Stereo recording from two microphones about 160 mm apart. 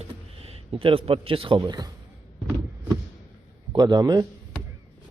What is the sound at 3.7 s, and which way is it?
Speech, 25° right (ahead or behind).